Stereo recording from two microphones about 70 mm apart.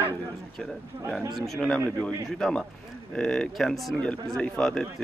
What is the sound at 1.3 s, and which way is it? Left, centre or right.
A man's voice, centre.